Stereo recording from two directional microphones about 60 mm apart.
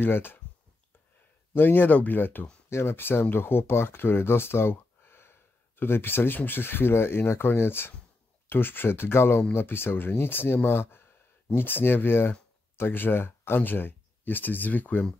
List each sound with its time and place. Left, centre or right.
0.0 s speech: left
1.5 s speech: left